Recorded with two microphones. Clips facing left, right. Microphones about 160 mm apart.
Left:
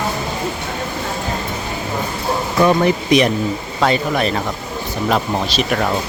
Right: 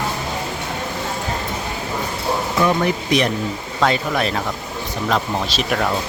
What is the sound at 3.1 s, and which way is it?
Speech, 15° left (ahead or behind).